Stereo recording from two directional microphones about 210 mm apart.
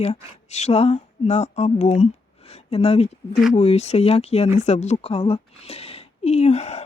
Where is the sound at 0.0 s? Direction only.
30° left (ahead or behind).